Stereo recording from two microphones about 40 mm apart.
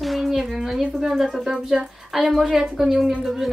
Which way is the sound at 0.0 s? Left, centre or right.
Centre.